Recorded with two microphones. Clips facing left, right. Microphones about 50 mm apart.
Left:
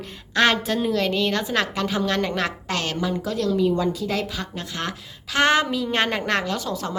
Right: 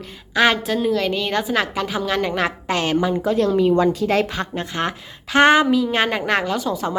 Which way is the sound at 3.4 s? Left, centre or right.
Right.